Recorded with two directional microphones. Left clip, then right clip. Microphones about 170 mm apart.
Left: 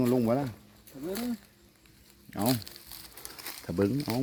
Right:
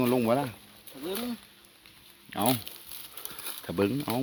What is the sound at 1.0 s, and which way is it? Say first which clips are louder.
Speech: right 1 dB; 40° left (ahead or behind).